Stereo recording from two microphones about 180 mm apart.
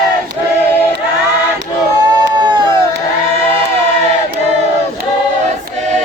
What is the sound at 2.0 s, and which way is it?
Baby cry, 25° right (ahead or behind).